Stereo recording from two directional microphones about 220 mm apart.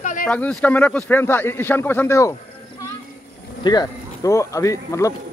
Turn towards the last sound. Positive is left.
turn(degrees=15)  # may be behind; listen again after turning